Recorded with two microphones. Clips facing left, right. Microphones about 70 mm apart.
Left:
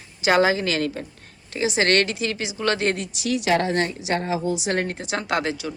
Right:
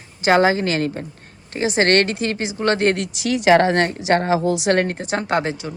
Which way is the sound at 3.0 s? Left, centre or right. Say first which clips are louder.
Right 3 dB; right.